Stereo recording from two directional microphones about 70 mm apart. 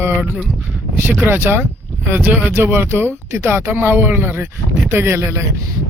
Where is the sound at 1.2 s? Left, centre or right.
Right.